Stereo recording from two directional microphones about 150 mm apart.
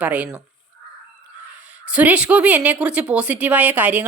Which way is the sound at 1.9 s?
10° right (ahead or behind).